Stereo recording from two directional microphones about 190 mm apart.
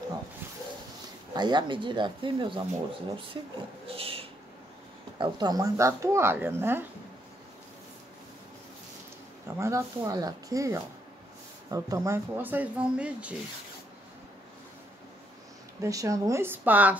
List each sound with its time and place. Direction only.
1.3 s speech: 25° right (ahead or behind)
3.8 s a sound: 30° right (ahead or behind)
5.2 s speech: 20° right (ahead or behind)
9.6 s speech: 15° right (ahead or behind)
15.8 s speech: 15° right (ahead or behind)